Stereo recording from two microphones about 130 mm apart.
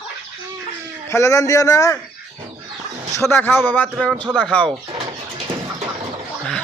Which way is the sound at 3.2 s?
15° left (ahead or behind).